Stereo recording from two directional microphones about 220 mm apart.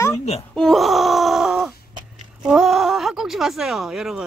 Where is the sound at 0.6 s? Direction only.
Centre (ahead or behind).